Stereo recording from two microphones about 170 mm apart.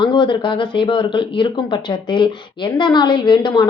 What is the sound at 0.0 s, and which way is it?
A woman's voice, 30° left (ahead or behind).